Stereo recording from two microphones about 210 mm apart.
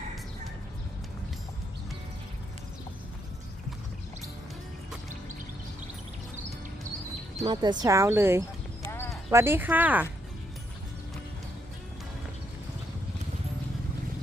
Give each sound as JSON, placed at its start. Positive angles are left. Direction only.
{"t": 7.3, "sound": "speech", "side_deg": -20}
{"t": 8.8, "sound": "clip-clop", "side_deg": 10}
{"t": 9.3, "sound": "speech", "side_deg": -10}